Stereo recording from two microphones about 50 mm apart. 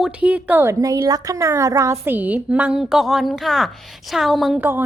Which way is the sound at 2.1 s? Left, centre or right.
Right.